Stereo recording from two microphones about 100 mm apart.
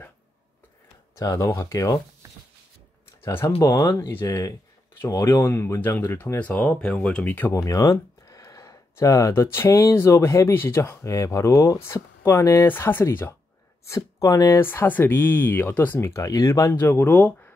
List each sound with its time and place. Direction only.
1.2 s speech: 35° left (ahead or behind)
2.2 s a sound: 30° right (ahead or behind)
3.3 s speech: 30° left (ahead or behind)
6.4 s speech: 15° left (ahead or behind)
7.2 s speech: 20° left (ahead or behind)
7.5 s speech: 30° left (ahead or behind)
13.8 s speech: 35° left (ahead or behind)
14.6 s speech: 20° left (ahead or behind)
16.2 s speech: 35° left (ahead or behind); by 17.5 s 15° left (ahead or behind)